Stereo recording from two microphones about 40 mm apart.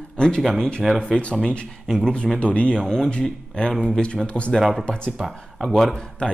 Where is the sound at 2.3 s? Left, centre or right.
Left.